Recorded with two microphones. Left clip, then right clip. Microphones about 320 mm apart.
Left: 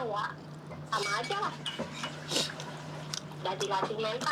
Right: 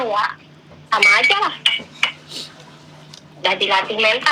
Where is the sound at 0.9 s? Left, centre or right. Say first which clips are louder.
Right 19 dB; right.